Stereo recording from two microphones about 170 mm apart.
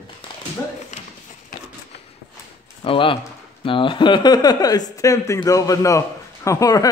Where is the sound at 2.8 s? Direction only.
30° left (ahead or behind).